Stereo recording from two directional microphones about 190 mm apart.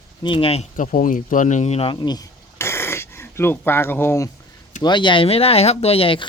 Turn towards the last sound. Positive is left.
turn(degrees=30)  # may be behind; listen again after turning